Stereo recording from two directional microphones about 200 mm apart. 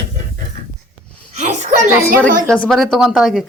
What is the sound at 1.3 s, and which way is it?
Speech, 35° right (ahead or behind).